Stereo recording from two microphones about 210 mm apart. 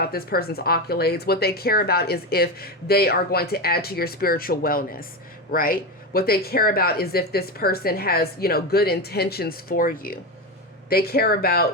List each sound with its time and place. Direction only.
0.0 s a woman's voice: 45° left (ahead or behind)